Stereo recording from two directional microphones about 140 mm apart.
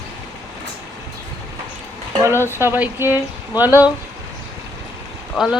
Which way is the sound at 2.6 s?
15° right (ahead or behind).